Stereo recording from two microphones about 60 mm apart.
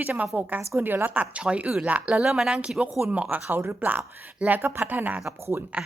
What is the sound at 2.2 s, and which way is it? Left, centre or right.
A woman's voice, centre.